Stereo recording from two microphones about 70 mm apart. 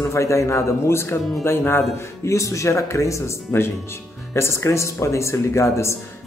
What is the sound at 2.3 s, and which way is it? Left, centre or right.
Speech, left.